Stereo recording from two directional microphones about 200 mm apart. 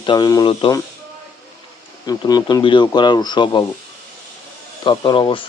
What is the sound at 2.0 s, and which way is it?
Speech, 20° left (ahead or behind).